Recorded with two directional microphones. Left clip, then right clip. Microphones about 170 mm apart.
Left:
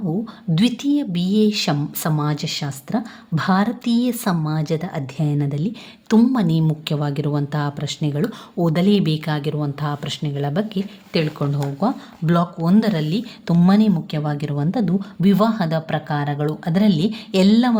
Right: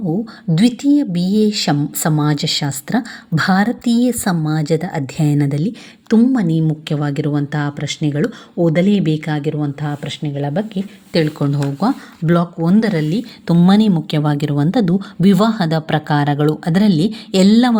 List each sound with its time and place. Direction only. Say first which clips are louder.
0.5 s speech: right 5 dB; 10° right (ahead or behind); by 3.0 s 25° right (ahead or behind)
3.0 s speech: right 7 dB; 15° right (ahead or behind)
6.1 s speech: right 3 dB; 10° right (ahead or behind)
11.1 s speech: right 5 dB; 20° right (ahead or behind)
13.7 s speech: right 4 dB; 30° right (ahead or behind)